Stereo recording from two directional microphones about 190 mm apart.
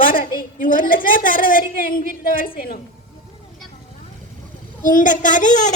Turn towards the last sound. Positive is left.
turn(degrees=40)  # may be behind; listen again after turning